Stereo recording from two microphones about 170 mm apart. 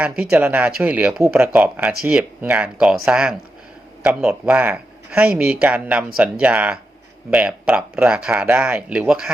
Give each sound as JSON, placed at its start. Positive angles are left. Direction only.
{"t": 0.0, "sound": "speech", "side_deg": -10}